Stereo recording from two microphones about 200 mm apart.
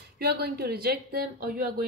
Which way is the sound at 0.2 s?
50° right (ahead or behind).